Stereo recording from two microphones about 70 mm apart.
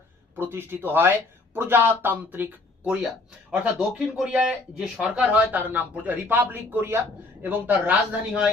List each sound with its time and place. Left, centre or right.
0.3 s speech: right